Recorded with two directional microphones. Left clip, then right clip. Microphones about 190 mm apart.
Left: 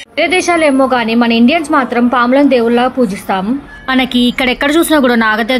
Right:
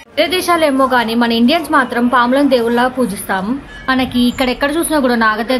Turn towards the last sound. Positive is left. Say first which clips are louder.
# left 2 dB
turn(degrees=15)  # may be behind; listen again after turning